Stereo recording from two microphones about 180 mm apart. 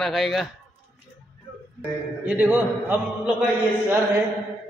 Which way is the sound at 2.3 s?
10° right (ahead or behind).